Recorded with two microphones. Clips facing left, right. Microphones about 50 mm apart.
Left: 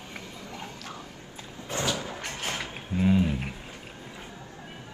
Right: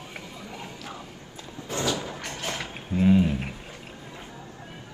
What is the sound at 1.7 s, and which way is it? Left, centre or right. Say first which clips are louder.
Slam: right 2 dB; left.